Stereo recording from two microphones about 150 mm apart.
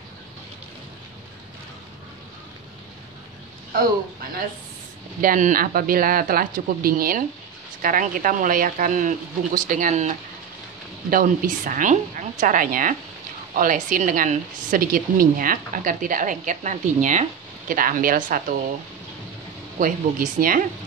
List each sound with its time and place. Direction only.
3.7 s a woman's voice: 75° right (ahead or behind); by 10.1 s 55° right (ahead or behind)
11.1 s a woman's voice: 65° right (ahead or behind)
19.8 s speech: 70° right (ahead or behind)